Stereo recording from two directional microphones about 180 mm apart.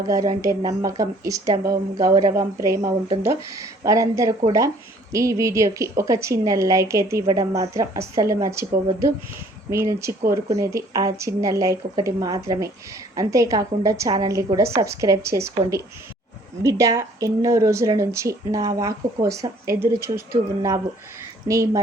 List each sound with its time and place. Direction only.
0.1 s a woman's voice: 20° right (ahead or behind)